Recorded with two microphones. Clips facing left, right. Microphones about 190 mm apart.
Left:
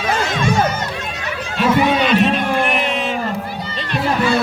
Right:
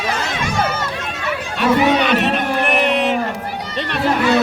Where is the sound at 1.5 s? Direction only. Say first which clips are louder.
Even; 65° right (ahead or behind).